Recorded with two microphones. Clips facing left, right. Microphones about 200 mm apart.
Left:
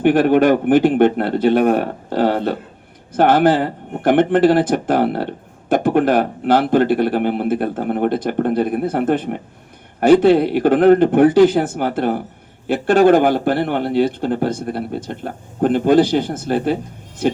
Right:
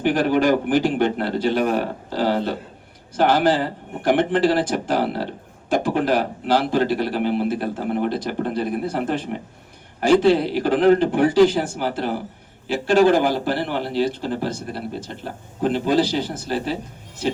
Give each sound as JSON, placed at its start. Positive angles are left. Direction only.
{"t": 0.0, "sound": "speech", "side_deg": 55}